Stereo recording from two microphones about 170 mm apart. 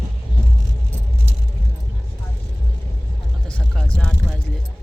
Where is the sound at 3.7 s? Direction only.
5° left (ahead or behind).